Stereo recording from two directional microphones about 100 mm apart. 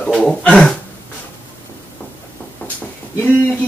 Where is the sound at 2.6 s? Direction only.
15° left (ahead or behind).